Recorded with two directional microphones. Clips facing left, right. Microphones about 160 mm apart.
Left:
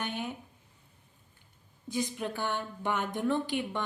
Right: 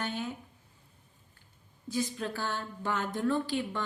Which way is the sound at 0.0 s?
15° left (ahead or behind).